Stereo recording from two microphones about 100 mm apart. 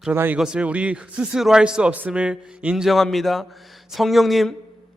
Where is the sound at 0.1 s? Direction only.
20° right (ahead or behind).